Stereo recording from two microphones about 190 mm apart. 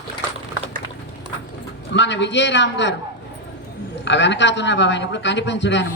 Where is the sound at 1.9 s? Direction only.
70° left (ahead or behind).